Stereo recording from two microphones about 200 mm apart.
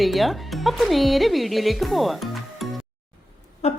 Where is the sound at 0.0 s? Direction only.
Centre (ahead or behind).